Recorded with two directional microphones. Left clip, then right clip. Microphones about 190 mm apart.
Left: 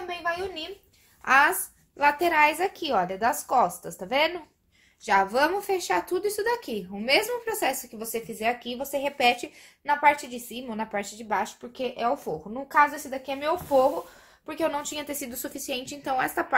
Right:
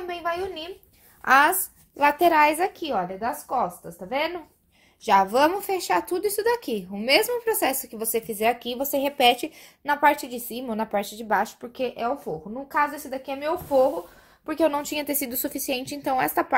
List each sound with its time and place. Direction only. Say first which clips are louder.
0.1 s a sound: right 1 dB; 30° right (ahead or behind)
1.2 s a woman's voice: right 2 dB; 45° right (ahead or behind); by 4.3 s 5° right (ahead or behind)
5.0 s a woman's voice: right 3 dB; 35° right (ahead or behind)
14.4 s speech: right 5 dB; 35° right (ahead or behind)